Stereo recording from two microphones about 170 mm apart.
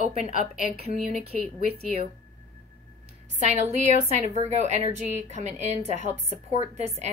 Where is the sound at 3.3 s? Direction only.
45° right (ahead or behind).